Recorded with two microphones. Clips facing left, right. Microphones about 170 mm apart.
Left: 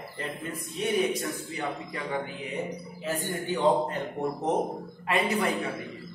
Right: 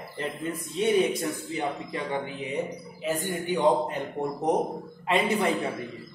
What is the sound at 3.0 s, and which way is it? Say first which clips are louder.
Speech: right 3 dB; 15° right (ahead or behind).